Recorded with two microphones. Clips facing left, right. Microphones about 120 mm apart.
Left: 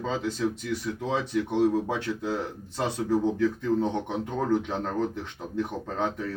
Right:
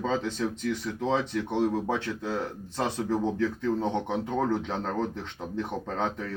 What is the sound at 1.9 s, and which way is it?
Speech, 15° left (ahead or behind).